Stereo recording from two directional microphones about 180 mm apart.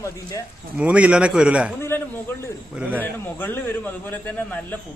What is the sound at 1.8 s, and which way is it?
Speech, 15° left (ahead or behind).